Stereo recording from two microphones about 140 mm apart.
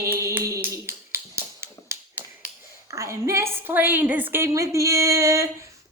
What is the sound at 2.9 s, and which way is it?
A woman's voice, 20° right (ahead or behind).